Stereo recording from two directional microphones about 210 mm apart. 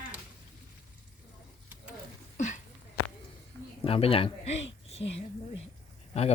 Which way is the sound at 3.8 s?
25° left (ahead or behind).